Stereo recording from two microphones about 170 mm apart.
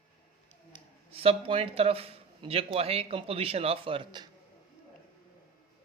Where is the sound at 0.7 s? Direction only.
35° right (ahead or behind).